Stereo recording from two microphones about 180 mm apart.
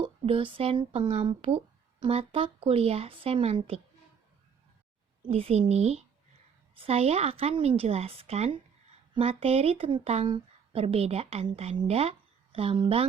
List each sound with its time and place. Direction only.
0.0 s speech: 30° right (ahead or behind)
5.3 s speech: 35° right (ahead or behind)